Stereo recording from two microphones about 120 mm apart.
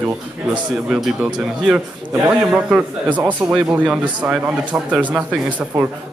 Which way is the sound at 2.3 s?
10° right (ahead or behind).